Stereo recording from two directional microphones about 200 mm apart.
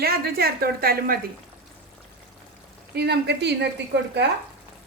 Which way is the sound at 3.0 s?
55° right (ahead or behind).